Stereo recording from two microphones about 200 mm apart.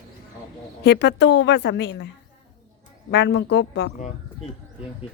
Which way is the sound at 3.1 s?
60° left (ahead or behind).